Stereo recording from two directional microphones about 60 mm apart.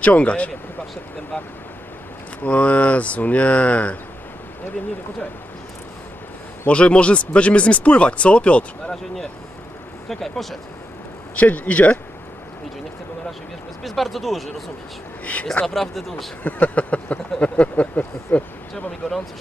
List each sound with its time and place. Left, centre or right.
0.0 s speech: left
2.4 s speech: left
6.7 s speech: centre
8.9 s speech: centre
11.3 s speech: left
13.8 s speech: centre
15.6 s speech: centre
16.4 s speech: left
18.9 s speech: centre